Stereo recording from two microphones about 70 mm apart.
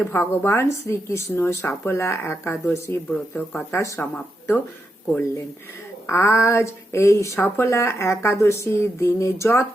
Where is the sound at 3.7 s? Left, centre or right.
Left.